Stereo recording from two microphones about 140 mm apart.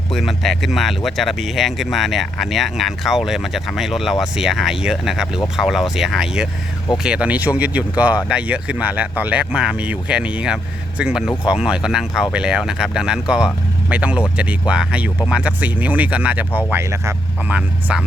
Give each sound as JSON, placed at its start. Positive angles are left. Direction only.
{"t": 0.1, "sound": "speech", "side_deg": 0}
{"t": 16.5, "sound": "speech", "side_deg": 15}
{"t": 16.7, "sound": "speech", "side_deg": -20}
{"t": 17.5, "sound": "speech", "side_deg": -10}